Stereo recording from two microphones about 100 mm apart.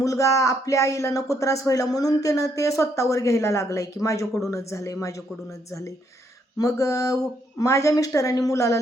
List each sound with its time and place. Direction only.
0.0 s speech: 35° left (ahead or behind)
6.6 s speech: 35° left (ahead or behind)